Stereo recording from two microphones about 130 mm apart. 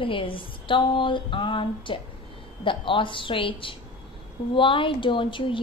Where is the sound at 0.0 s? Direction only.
40° left (ahead or behind).